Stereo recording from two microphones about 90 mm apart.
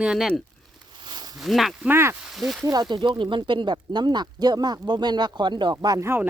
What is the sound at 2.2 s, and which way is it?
Speech, 5° right (ahead or behind).